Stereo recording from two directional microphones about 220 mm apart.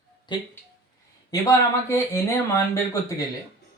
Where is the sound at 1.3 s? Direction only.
15° left (ahead or behind).